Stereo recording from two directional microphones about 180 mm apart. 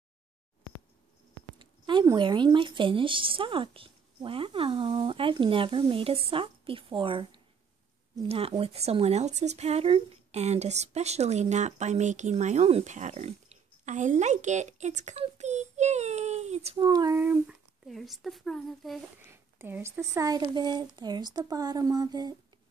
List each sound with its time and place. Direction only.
1.6 s speech: 25° right (ahead or behind)
16.8 s speech: 20° right (ahead or behind)
17.8 s a woman's voice: centre (ahead or behind)
19.2 s speech: 10° right (ahead or behind)